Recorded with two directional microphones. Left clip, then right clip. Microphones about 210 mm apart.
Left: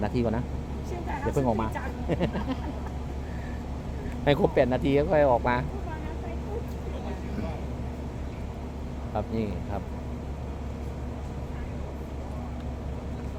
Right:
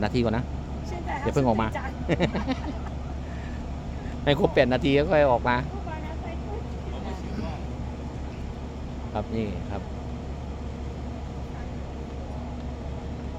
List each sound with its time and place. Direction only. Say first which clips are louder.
0.0 s speech: right 2 dB; 10° right (ahead or behind)
4.2 s speech: right 1 dB; centre (ahead or behind)
9.1 s speech: even; centre (ahead or behind)